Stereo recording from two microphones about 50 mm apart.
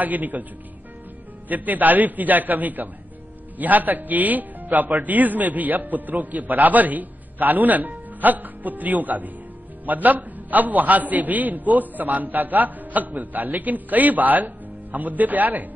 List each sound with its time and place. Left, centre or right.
0.0 s a man's voice: right
1.5 s a man's voice: right